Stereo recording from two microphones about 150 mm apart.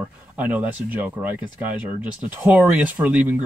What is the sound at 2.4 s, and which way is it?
Speech, 10° right (ahead or behind).